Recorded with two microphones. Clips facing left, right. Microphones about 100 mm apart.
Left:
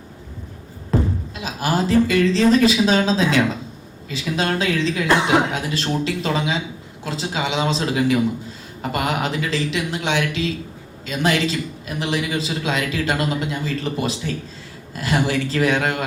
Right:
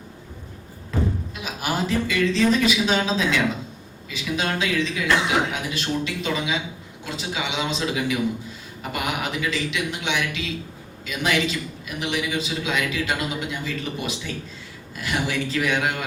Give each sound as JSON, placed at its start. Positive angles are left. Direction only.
{"t": 1.4, "sound": "a man's voice", "side_deg": 35}